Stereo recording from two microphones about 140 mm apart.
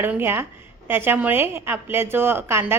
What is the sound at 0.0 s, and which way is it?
A woman's voice, 15° right (ahead or behind).